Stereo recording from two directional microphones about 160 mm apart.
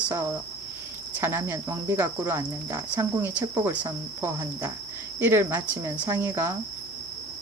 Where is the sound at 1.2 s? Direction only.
15° right (ahead or behind).